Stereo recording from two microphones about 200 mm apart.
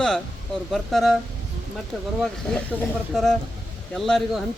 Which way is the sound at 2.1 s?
Centre (ahead or behind).